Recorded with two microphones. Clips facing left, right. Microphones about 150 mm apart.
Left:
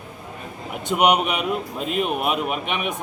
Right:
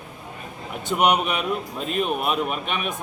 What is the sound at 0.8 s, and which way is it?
A man's voice, 15° left (ahead or behind).